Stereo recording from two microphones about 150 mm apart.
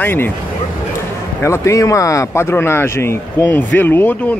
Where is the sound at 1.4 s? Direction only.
20° left (ahead or behind).